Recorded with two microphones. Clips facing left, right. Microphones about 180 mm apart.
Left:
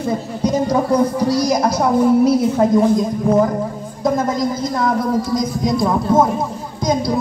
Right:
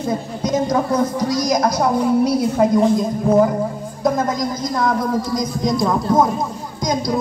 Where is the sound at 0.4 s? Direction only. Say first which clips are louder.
Left 2 dB; 10° left (ahead or behind).